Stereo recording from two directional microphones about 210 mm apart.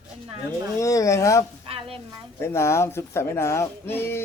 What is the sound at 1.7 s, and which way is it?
Stir, 25° right (ahead or behind).